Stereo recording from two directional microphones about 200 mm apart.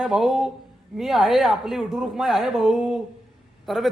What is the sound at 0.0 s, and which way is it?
A man's voice, centre (ahead or behind).